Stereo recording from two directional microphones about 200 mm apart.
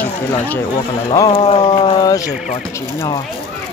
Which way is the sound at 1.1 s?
25° left (ahead or behind).